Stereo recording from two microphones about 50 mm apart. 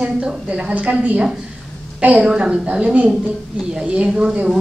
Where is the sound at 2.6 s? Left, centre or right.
Right.